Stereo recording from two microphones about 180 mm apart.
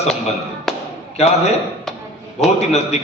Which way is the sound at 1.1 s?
35° left (ahead or behind).